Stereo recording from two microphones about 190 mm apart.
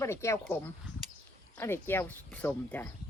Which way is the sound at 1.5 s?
10° left (ahead or behind).